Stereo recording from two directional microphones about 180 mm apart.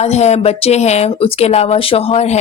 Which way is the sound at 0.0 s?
40° left (ahead or behind).